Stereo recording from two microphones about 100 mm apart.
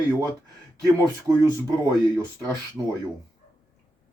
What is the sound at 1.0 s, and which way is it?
Speech, 35° right (ahead or behind).